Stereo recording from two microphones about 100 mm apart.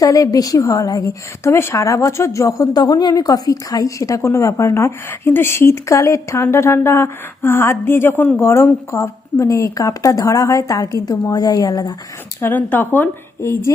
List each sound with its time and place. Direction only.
0.0 s a woman's voice: 35° left (ahead or behind)
12.4 s speech: 20° left (ahead or behind)